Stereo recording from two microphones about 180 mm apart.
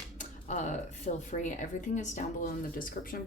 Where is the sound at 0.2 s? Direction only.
45° left (ahead or behind).